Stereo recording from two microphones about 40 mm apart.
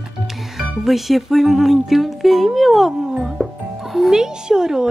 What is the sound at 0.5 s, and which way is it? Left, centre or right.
Speech, centre.